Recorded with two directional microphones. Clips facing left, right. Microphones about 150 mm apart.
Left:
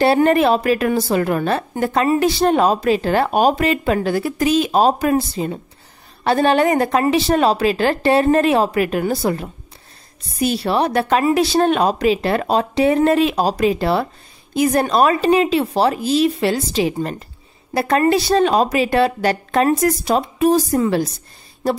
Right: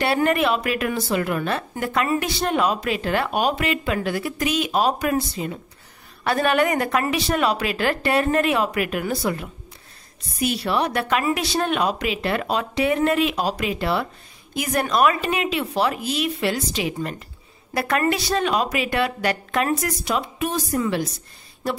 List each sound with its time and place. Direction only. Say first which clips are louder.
0.0 s a woman's voice: left 6 dB; 35° left (ahead or behind)